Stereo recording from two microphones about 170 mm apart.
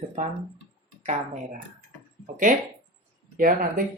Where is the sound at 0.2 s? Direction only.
45° right (ahead or behind).